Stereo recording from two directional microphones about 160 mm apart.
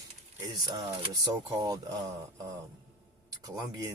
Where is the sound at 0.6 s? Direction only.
25° right (ahead or behind).